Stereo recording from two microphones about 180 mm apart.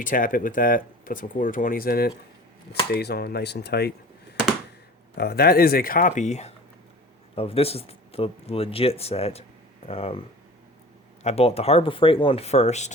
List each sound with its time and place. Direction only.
0.0 s speech: 50° left (ahead or behind); by 3.9 s 65° left (ahead or behind)
5.1 s speech: 60° left (ahead or behind); by 12.9 s 40° left (ahead or behind)